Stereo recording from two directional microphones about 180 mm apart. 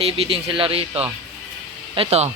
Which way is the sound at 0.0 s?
30° right (ahead or behind).